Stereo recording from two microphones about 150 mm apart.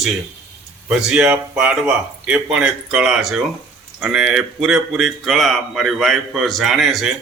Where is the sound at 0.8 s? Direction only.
5° right (ahead or behind).